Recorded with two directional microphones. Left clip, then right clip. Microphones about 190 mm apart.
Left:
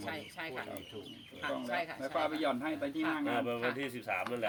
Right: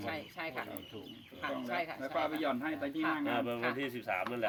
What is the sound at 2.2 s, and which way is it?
A woman's voice, 10° right (ahead or behind).